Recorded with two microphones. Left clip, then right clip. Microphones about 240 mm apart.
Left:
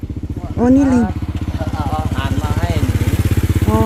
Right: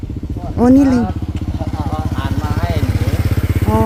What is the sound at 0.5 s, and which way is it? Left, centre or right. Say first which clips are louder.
Speech: right 2 dB; centre.